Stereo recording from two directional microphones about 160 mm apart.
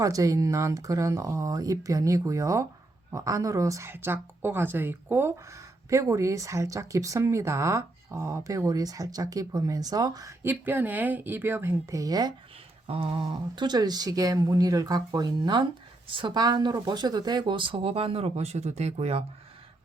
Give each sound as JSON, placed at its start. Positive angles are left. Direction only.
{"t": 0.0, "sound": "speech", "side_deg": -20}
{"t": 12.9, "sound": "speech", "side_deg": -35}